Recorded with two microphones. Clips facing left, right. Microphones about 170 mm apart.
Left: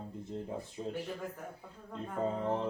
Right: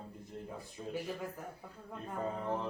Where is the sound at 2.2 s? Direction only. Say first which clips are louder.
Left 4 dB; 25° left (ahead or behind).